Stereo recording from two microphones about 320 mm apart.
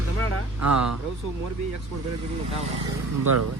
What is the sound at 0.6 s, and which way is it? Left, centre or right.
Speech, right.